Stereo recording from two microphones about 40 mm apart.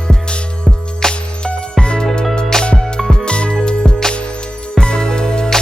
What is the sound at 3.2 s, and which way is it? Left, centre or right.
Music, left.